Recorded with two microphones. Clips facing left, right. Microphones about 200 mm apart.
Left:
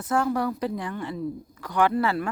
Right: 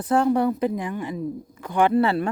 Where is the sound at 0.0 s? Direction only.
30° right (ahead or behind).